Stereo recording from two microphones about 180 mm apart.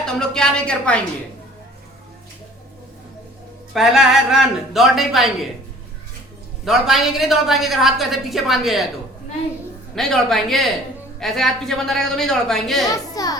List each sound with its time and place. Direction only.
0.0 s a woman's voice: 5° left (ahead or behind)
3.8 s a woman's voice: centre (ahead or behind)
6.7 s a woman's voice: centre (ahead or behind)
9.9 s a woman's voice: centre (ahead or behind)
12.8 s a woman's voice: 20° left (ahead or behind)